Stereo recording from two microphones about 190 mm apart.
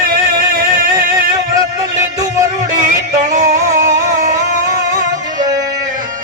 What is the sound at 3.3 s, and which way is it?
Music, 40° right (ahead or behind).